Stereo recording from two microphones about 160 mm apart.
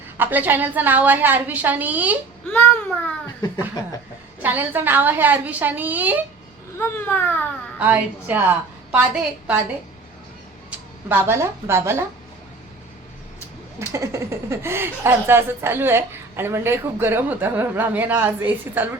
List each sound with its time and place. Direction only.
0.2 s speech: 10° right (ahead or behind)
2.5 s speech: 10° left (ahead or behind)
4.4 s speech: 10° right (ahead or behind)
6.7 s speech: 15° left (ahead or behind)
7.8 s a woman's voice: 10° right (ahead or behind)
10.7 s speech: 10° right (ahead or behind)
13.7 s speech: 20° right (ahead or behind)